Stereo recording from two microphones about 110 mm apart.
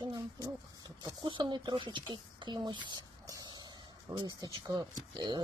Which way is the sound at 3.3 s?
35° right (ahead or behind).